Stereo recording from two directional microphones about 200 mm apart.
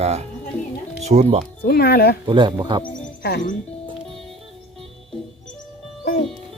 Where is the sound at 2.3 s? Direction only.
25° right (ahead or behind).